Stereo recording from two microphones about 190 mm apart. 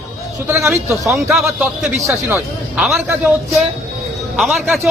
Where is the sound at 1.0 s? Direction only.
Centre (ahead or behind).